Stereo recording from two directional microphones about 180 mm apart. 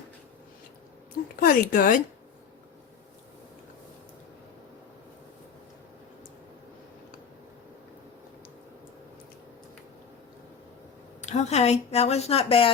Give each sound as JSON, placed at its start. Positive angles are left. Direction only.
{"t": 1.4, "sound": "speech", "side_deg": 50}
{"t": 11.2, "sound": "speech", "side_deg": 40}